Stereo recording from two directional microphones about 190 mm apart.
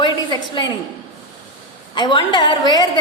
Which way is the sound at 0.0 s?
20° left (ahead or behind).